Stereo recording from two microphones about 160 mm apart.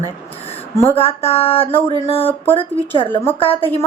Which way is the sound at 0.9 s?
40° left (ahead or behind).